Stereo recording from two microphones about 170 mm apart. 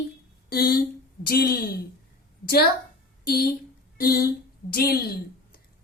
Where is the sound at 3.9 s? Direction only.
65° left (ahead or behind).